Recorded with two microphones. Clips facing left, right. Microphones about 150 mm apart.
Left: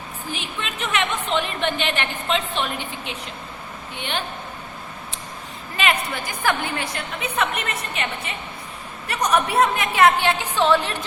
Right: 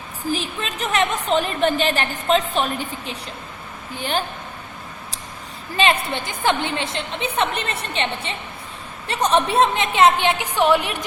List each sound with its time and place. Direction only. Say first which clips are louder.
0.3 s a woman's voice: right 7 dB; 35° right (ahead or behind)
5.7 s a woman's voice: right 3 dB; 30° right (ahead or behind)